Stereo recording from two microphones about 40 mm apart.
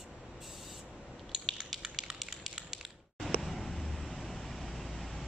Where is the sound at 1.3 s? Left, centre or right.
Centre.